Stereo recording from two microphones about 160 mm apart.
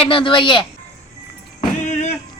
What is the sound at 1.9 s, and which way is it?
Music, 50° left (ahead or behind).